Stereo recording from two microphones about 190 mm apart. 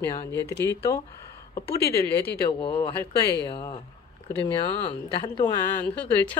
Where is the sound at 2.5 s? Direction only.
25° left (ahead or behind).